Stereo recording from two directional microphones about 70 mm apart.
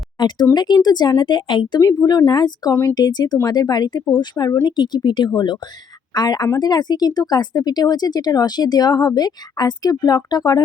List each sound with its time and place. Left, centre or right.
0.2 s speech: left
0.5 s speech: left
6.1 s speech: left